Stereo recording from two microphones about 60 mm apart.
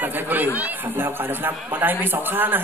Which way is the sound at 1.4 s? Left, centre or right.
Right.